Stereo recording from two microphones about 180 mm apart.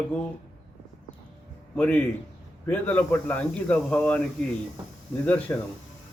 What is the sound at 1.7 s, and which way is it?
A man's voice, 10° left (ahead or behind).